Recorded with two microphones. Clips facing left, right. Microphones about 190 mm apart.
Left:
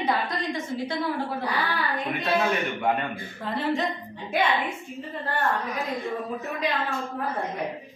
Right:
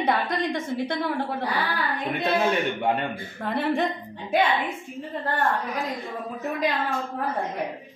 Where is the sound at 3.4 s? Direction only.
55° right (ahead or behind).